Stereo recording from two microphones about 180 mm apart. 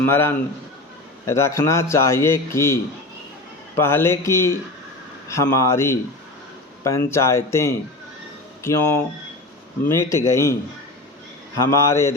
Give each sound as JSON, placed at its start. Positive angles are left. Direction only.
{"t": 0.0, "sound": "a man's voice", "side_deg": 10}
{"t": 3.8, "sound": "a man's voice", "side_deg": 15}
{"t": 11.5, "sound": "a man's voice", "side_deg": 15}